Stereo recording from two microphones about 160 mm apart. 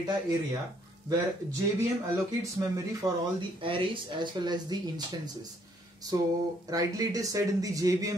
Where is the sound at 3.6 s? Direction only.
35° right (ahead or behind).